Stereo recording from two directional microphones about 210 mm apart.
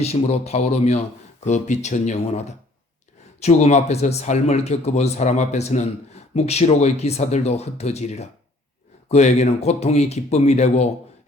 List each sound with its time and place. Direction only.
0.0 s speech: 30° left (ahead or behind)